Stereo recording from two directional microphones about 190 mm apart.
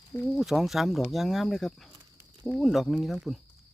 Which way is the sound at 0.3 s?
Centre (ahead or behind).